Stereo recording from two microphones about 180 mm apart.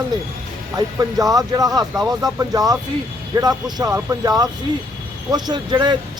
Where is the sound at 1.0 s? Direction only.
20° right (ahead or behind).